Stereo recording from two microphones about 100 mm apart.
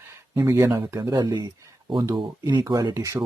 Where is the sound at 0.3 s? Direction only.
30° right (ahead or behind).